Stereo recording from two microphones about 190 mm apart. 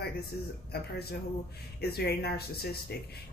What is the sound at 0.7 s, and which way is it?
Speech, 55° left (ahead or behind).